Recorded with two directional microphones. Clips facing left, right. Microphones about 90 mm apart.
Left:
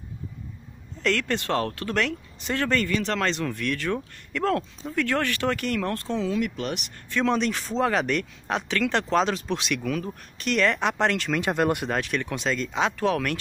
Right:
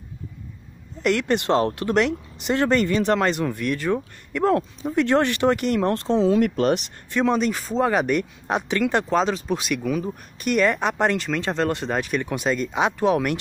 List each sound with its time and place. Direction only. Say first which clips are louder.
1.0 s speech: right 5 dB; 15° right (ahead or behind); by 6.8 s 45° right (ahead or behind)
7.1 s speech: right 3 dB; 15° right (ahead or behind)
7.3 s speech: right 3 dB; 5° right (ahead or behind)
11.4 s speech: left 2 dB; 15° left (ahead or behind)
11.9 s speech: right 3 dB; 5° right (ahead or behind)